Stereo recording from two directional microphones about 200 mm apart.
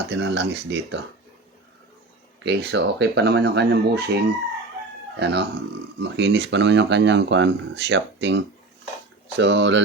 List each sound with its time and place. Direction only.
0.1 s speech: 60° right (ahead or behind)
2.4 s speech: 60° right (ahead or behind)
5.2 s speech: 55° right (ahead or behind)